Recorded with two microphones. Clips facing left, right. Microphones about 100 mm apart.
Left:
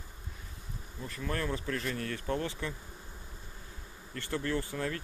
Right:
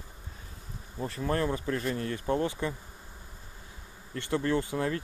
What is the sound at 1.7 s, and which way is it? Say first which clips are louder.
Speech: right 4 dB; 25° right (ahead or behind).